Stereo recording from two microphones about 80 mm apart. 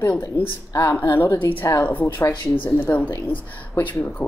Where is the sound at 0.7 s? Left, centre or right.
Left.